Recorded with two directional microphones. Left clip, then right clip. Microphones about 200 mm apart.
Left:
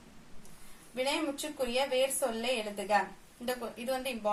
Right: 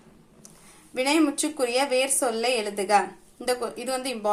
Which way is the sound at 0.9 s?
35° right (ahead or behind).